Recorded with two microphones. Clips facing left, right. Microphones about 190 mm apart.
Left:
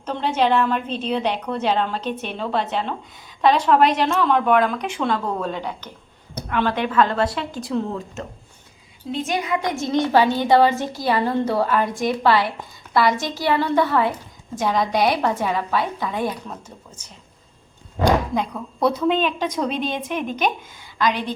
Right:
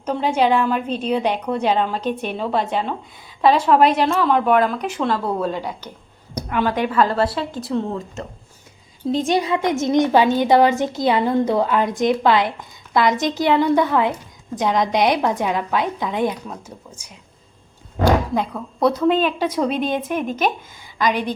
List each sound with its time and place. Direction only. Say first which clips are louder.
0.0 s a woman's voice: right 2 dB; 5° right (ahead or behind)
9.1 s a woman's voice: right 4 dB; 30° right (ahead or behind); by 16.3 s 15° right (ahead or behind)
18.3 s a woman's voice: right 2 dB; centre (ahead or behind)